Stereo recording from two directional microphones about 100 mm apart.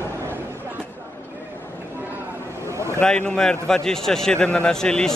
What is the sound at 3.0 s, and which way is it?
A man's voice, 10° left (ahead or behind).